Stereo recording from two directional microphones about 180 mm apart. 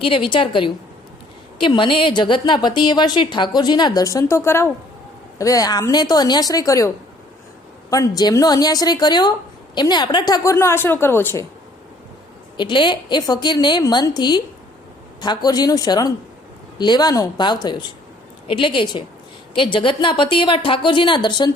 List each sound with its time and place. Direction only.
0.0 s a woman's voice: 25° left (ahead or behind); by 11.4 s 10° left (ahead or behind)
12.5 s a woman's voice: 25° left (ahead or behind)